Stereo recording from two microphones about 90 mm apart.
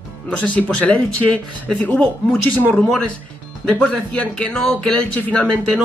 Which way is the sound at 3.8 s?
15° left (ahead or behind).